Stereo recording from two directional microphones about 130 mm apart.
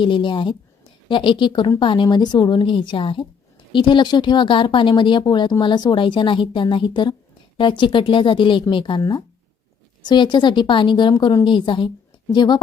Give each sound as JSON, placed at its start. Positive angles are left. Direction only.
{"t": 0.0, "sound": "speech", "side_deg": 40}